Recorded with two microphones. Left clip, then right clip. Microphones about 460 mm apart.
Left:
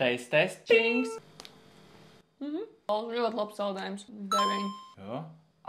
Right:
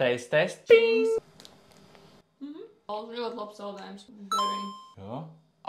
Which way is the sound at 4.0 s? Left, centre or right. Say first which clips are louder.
Right 1 dB; centre.